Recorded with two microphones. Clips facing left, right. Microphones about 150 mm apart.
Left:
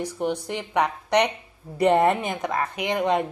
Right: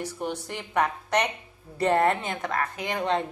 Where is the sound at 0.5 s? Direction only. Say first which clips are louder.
Left 2 dB; 15° left (ahead or behind).